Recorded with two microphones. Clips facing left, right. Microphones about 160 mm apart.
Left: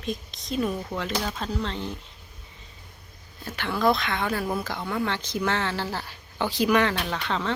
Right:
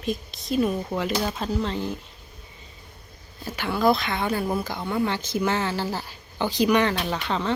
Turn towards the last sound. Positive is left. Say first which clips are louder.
# right 2 dB
turn(degrees=0)  # may be behind; listen again after turning